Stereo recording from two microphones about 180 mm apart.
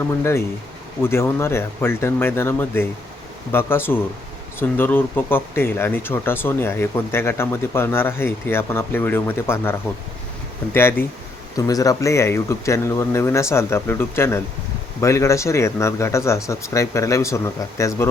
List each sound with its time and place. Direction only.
0.1 s speech: 15° left (ahead or behind)
10.8 s speech: 15° left (ahead or behind)